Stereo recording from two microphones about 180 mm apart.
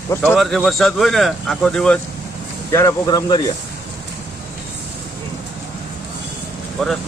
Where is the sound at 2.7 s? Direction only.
20° left (ahead or behind).